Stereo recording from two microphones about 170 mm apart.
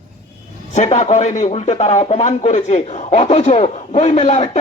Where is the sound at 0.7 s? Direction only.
45° left (ahead or behind).